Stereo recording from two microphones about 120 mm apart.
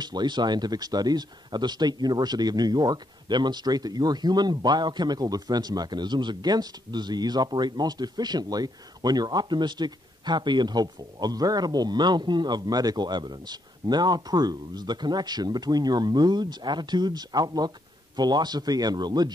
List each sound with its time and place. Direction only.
0.0 s speech: 35° right (ahead or behind)